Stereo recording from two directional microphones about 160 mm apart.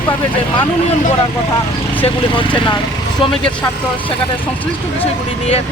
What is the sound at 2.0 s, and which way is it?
Speech, 30° left (ahead or behind).